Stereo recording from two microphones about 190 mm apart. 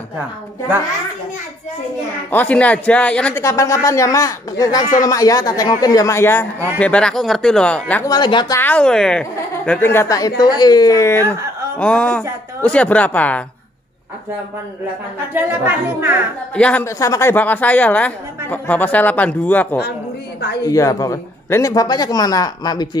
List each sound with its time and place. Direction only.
2.3 s a woman's voice: 5° left (ahead or behind)
8.1 s a man's voice: 25° left (ahead or behind)
8.5 s a woman's voice: 10° left (ahead or behind)
15.3 s speech: 10° right (ahead or behind)
16.5 s a woman's voice: 5° left (ahead or behind)